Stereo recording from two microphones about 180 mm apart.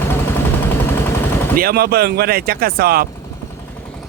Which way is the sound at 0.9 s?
15° left (ahead or behind).